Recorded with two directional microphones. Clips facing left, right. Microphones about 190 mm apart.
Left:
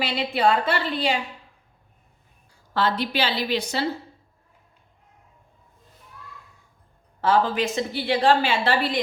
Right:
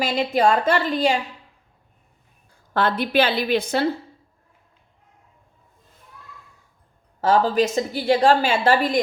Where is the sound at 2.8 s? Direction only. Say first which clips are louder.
Right 4 dB; 55° right (ahead or behind).